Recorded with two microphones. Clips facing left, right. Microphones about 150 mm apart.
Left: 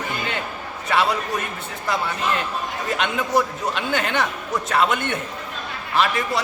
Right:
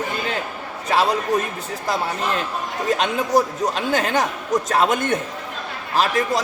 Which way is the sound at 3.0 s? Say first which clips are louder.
Right 1 dB; 35° right (ahead or behind).